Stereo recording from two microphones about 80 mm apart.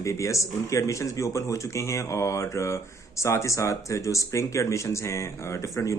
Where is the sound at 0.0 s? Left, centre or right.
Left.